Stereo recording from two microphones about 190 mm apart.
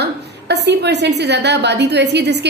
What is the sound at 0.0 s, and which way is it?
A woman's voice, 60° right (ahead or behind).